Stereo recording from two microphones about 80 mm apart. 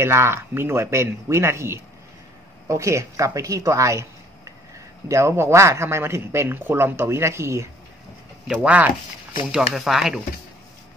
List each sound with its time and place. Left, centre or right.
0.0 s speech: right
8.5 s speech: centre
9.5 s speech: centre